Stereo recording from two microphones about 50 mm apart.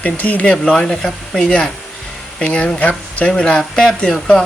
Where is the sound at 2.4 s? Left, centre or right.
Left.